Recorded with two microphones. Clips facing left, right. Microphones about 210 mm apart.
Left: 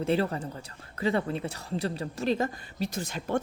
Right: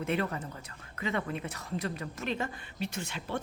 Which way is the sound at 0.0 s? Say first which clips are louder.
Left 5 dB; 30° left (ahead or behind).